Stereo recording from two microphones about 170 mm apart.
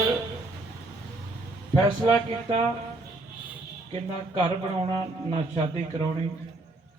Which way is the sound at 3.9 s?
35° right (ahead or behind).